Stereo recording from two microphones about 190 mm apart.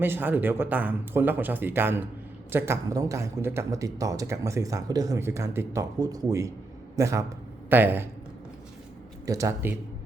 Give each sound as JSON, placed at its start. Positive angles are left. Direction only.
{"t": 0.0, "sound": "speech", "side_deg": -10}
{"t": 9.2, "sound": "speech", "side_deg": -15}